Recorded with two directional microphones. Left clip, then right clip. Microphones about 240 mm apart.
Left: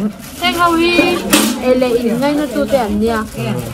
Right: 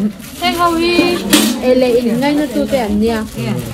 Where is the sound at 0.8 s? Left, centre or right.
Centre.